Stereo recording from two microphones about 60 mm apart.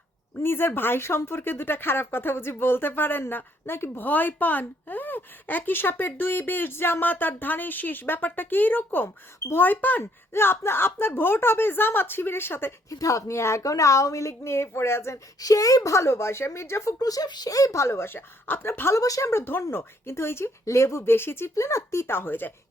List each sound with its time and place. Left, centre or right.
0.3 s speech: left
10.0 s speech: left
12.9 s speech: left
13.3 s speech: left
15.4 s speech: left
17.0 s speech: left
18.9 s speech: left
19.3 s speech: left
20.7 s speech: left
22.0 s speech: left